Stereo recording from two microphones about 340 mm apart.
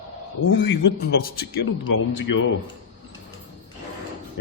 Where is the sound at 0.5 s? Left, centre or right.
Left.